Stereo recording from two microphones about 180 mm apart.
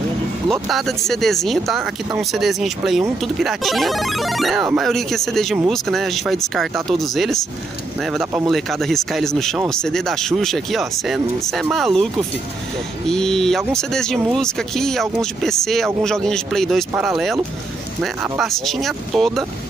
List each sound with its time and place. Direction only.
0.5 s speech: centre (ahead or behind)
8.5 s speech: centre (ahead or behind)
13.1 s speech: 5° left (ahead or behind)